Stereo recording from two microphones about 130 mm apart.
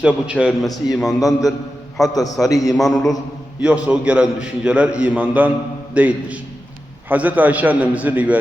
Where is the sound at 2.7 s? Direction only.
Centre (ahead or behind).